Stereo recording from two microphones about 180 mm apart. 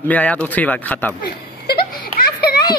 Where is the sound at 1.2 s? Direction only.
55° left (ahead or behind).